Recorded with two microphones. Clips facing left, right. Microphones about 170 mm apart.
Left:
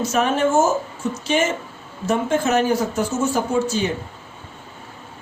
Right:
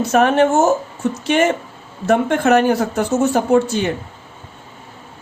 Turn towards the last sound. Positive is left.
turn(degrees=-60)  # may be behind; listen again after turning